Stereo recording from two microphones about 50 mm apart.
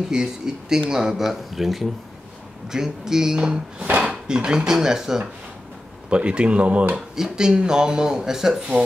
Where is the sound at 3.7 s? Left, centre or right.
Right.